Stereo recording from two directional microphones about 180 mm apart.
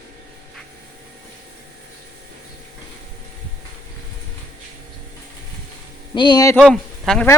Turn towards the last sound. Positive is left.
turn(degrees=5)  # may be behind; listen again after turning